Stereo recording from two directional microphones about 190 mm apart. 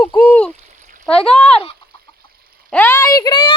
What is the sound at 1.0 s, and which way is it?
Speech, 5° left (ahead or behind).